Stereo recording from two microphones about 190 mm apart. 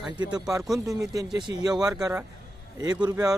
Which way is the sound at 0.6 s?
Centre (ahead or behind).